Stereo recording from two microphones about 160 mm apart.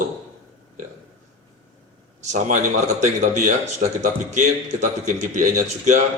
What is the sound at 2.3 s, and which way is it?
Speech, 50° right (ahead or behind).